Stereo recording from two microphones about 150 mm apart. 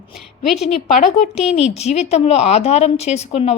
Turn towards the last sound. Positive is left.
turn(degrees=45)  # may be behind; listen again after turning